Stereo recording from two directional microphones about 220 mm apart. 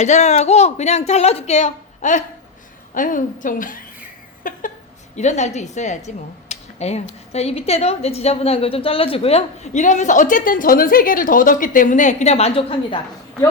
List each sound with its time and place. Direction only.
0.0 s a woman's voice: 30° left (ahead or behind)
6.1 s a sound: 30° left (ahead or behind)
7.3 s a woman's voice: 30° left (ahead or behind)